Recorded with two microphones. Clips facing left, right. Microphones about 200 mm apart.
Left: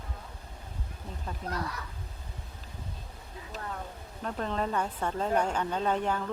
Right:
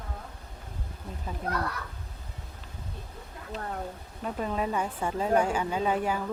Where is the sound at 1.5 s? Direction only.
60° right (ahead or behind).